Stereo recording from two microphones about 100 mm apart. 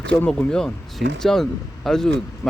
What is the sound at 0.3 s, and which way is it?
Speech, 5° left (ahead or behind).